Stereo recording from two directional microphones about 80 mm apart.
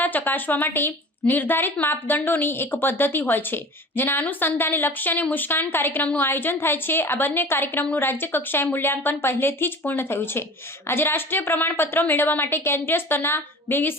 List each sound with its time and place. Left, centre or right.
0.0 s a woman's voice: left